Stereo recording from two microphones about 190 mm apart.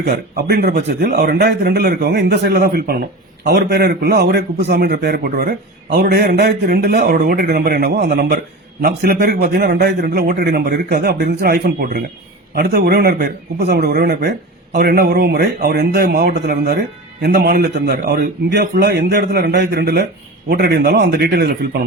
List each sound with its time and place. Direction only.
0.0 s a man's voice: 55° right (ahead or behind)